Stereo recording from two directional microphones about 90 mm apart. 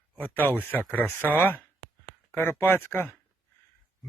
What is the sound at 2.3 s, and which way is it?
Speech, 25° left (ahead or behind).